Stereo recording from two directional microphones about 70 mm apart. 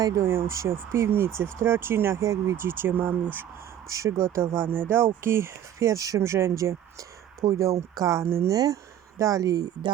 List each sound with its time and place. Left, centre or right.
0.2 s speech: right
2.2 s speech: right
2.6 s speech: right
3.8 s speech: right
5.9 s speech: right
6.1 s speech: right
8.4 s speech: right